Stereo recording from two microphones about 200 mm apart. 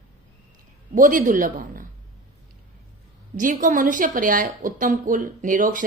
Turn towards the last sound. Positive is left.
turn(degrees=-40)  # may be behind; listen again after turning